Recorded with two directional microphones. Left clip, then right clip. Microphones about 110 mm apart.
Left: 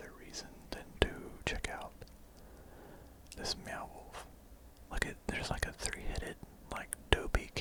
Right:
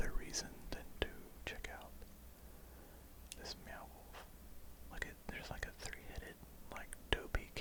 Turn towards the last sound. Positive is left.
turn(degrees=30)  # may be behind; listen again after turning